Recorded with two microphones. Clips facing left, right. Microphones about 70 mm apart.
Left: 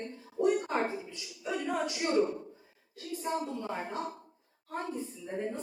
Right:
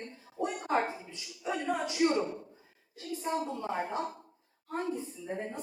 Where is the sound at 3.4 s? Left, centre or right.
Centre.